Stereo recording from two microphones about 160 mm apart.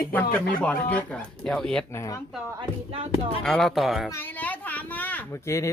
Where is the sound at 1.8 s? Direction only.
20° left (ahead or behind).